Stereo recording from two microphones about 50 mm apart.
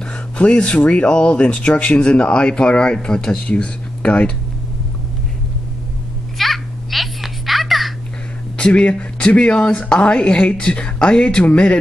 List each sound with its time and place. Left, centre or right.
0.0 s speech: left
6.3 s a sound: centre
8.5 s speech: left